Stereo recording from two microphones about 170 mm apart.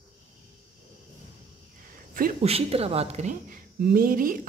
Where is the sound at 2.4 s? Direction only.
35° right (ahead or behind).